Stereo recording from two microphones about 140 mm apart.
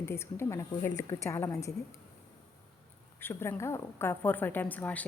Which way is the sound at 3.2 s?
15° left (ahead or behind).